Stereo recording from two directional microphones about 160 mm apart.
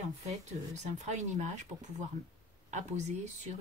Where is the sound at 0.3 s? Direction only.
45° right (ahead or behind).